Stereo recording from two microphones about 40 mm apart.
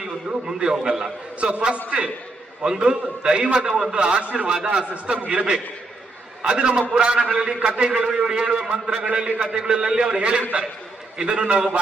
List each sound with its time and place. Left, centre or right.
0.3 s a man's voice: right
1.4 s a man's voice: right